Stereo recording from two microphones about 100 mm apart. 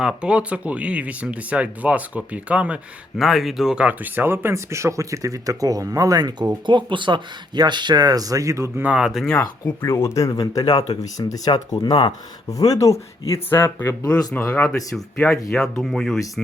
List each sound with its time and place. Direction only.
0.0 s speech: 10° right (ahead or behind); by 8.8 s 30° right (ahead or behind)
8.8 s speech: 10° right (ahead or behind)
9.4 s speech: 30° left (ahead or behind); by 12.1 s 50° left (ahead or behind)
12.5 s speech: 35° left (ahead or behind); by 14.7 s 20° left (ahead or behind)
14.7 s speech: 10° left (ahead or behind)